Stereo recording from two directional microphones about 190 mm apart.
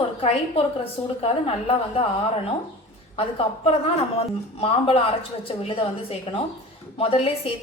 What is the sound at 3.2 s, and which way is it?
A man's voice, 30° left (ahead or behind).